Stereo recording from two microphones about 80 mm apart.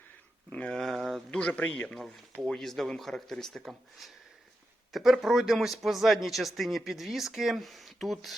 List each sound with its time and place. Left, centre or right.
0.5 s speech: centre
0.8 s a sound: centre
1.4 s speech: centre
2.5 s a man's voice: centre
4.9 s a man's voice: centre